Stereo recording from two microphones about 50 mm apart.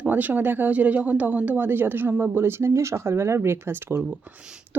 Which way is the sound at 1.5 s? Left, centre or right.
Right.